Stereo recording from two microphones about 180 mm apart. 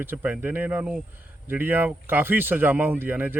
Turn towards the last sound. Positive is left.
turn(degrees=-10)  # may be behind; listen again after turning